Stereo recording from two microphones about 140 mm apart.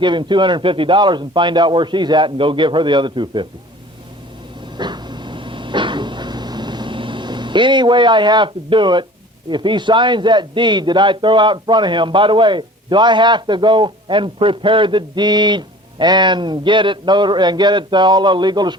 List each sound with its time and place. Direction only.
0.0 s a man's voice: 35° right (ahead or behind)
4.8 s a sound: 30° right (ahead or behind)
9.5 s a man's voice: 35° right (ahead or behind)